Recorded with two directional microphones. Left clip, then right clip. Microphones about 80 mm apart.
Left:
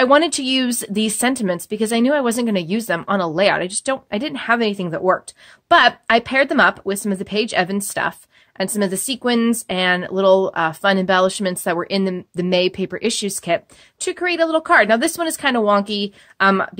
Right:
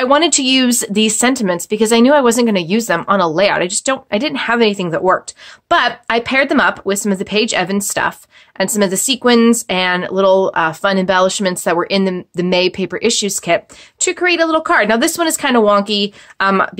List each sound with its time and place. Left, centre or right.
0.0 s speech: left
1.7 s speech: left